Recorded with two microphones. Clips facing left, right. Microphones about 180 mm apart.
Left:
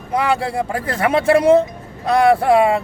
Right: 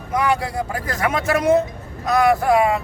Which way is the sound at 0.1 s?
30° left (ahead or behind).